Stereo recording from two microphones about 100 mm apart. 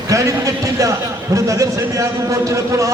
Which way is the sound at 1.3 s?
35° right (ahead or behind).